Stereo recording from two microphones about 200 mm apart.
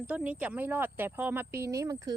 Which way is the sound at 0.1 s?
10° right (ahead or behind).